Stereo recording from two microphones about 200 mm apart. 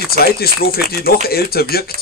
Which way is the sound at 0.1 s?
50° left (ahead or behind).